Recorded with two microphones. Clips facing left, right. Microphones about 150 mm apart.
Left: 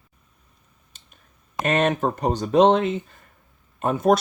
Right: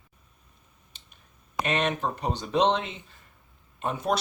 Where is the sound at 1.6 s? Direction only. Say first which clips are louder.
Left 6 dB; 45° left (ahead or behind).